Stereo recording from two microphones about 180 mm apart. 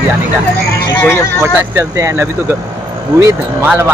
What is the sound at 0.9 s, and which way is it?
Speech, 15° left (ahead or behind).